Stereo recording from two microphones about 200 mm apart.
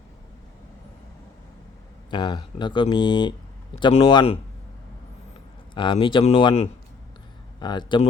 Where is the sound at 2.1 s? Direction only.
20° left (ahead or behind).